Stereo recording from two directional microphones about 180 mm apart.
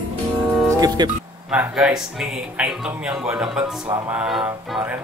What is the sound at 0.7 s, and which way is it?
Music, 20° right (ahead or behind).